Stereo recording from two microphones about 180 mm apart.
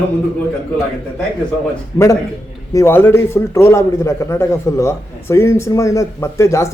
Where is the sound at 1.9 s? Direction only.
20° left (ahead or behind).